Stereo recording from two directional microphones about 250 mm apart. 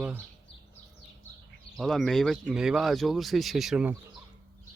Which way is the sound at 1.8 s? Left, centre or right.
Centre.